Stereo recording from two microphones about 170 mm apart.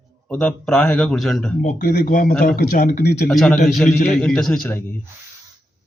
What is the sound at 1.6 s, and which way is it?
Speech, 50° left (ahead or behind).